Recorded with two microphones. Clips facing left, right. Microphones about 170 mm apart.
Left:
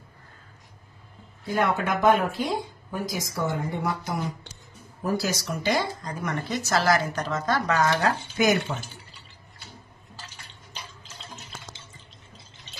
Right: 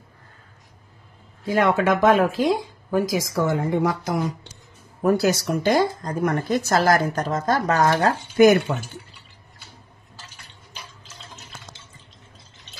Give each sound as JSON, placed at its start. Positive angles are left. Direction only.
{"t": 1.4, "sound": "speech", "side_deg": -90}
{"t": 5.0, "sound": "speech", "side_deg": -60}